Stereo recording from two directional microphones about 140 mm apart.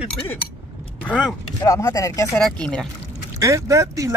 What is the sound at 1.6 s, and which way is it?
Speech, 25° left (ahead or behind).